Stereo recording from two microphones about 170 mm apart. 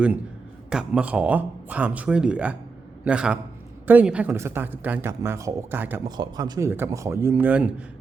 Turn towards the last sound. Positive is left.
turn(degrees=-10)  # may be behind; listen again after turning